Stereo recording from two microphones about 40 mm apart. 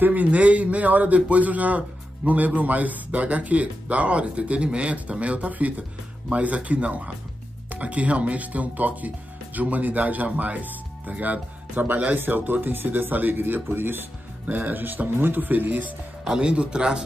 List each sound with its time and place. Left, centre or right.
0.0 s a man's voice: right
14.5 s speech: right
16.3 s speech: right